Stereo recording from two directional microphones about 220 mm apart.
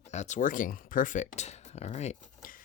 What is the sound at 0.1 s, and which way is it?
Speech, 30° left (ahead or behind).